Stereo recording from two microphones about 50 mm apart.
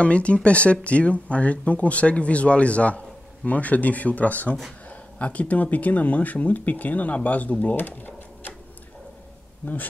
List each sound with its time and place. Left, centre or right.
0.0 s speech: left
7.7 s typewriter: left